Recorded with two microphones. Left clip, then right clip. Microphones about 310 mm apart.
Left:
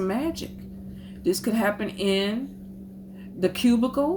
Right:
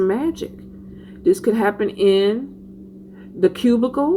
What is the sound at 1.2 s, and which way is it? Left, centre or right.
Speech, left.